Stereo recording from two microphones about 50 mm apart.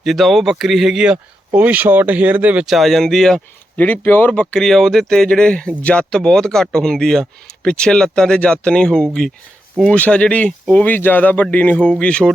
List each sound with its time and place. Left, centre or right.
0.0 s speech: centre
0.9 s speech: centre
1.5 s speech: right
2.6 s speech: centre
3.8 s speech: left
4.3 s speech: left
4.6 s speech: centre; by 11.9 s left
11.9 s speech: left